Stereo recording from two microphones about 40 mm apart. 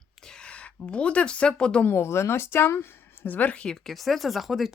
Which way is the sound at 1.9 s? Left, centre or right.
Left.